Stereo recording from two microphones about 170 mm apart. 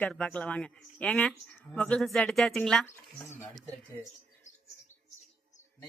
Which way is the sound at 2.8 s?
15° left (ahead or behind).